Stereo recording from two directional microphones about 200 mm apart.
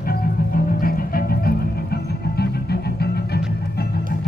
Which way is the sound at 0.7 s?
45° left (ahead or behind).